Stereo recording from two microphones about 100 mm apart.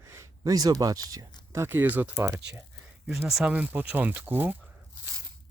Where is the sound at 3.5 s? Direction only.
15° right (ahead or behind).